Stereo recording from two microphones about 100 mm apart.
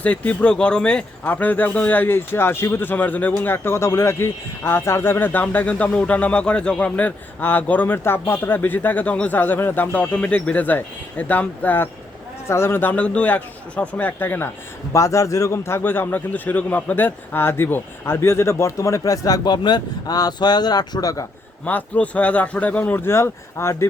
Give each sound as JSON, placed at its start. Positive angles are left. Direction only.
{"t": 0.0, "sound": "a man's voice", "side_deg": 15}
{"t": 14.9, "sound": "a man's voice", "side_deg": 30}
{"t": 21.6, "sound": "speech", "side_deg": 15}